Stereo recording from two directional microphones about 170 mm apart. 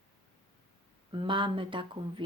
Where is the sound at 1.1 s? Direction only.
30° right (ahead or behind).